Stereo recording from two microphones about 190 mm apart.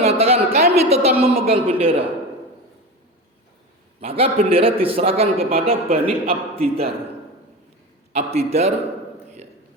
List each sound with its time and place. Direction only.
0.0 s a sound: 35° right (ahead or behind)
0.7 s a man's voice: 35° right (ahead or behind)
4.0 s a man's voice: 30° right (ahead or behind)
8.1 s a man's voice: 35° right (ahead or behind)